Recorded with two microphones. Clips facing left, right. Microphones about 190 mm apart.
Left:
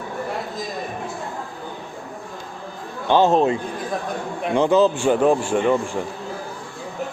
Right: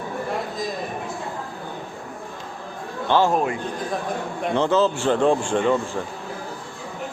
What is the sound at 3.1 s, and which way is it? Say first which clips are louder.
Speech: left 4 dB; 20° left (ahead or behind).